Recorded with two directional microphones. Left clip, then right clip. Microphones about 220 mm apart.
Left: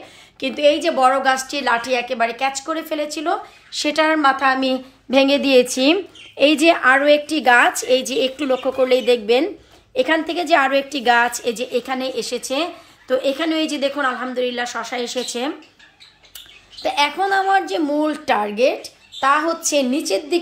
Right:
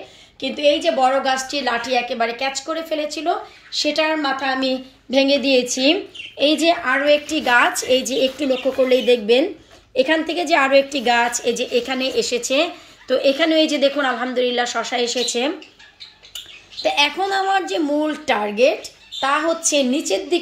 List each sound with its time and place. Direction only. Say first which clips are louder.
0.4 s a woman's voice: left 1 dB; 5° left (ahead or behind)
7.2 s a woman's voice: left 2 dB; 40° left (ahead or behind)
8.0 s a woman's voice: right 1 dB; 5° left (ahead or behind)
16.8 s a woman's voice: even; centre (ahead or behind)